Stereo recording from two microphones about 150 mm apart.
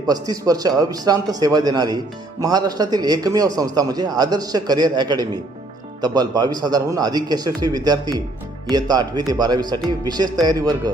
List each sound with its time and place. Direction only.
0.1 s a man's voice: 25° right (ahead or behind)